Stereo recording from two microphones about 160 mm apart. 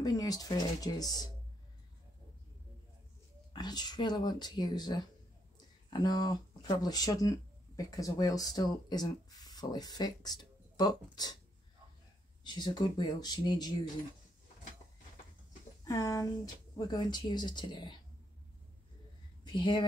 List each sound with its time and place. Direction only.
0.0 s speech: 25° left (ahead or behind)
3.5 s speech: 25° left (ahead or behind)
12.4 s speech: 25° left (ahead or behind)
15.9 s speech: 20° left (ahead or behind)
19.4 s speech: 30° left (ahead or behind)